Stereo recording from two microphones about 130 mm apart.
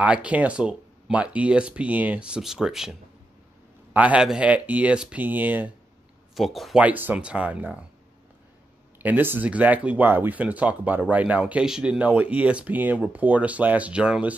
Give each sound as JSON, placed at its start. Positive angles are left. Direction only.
{"t": 0.0, "sound": "speech", "side_deg": -10}
{"t": 3.9, "sound": "speech", "side_deg": -10}
{"t": 6.3, "sound": "speech", "side_deg": 0}
{"t": 6.8, "sound": "speech", "side_deg": -15}
{"t": 9.0, "sound": "speech", "side_deg": -15}